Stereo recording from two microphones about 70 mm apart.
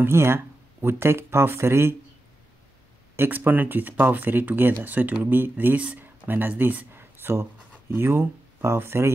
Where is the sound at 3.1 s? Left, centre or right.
Right.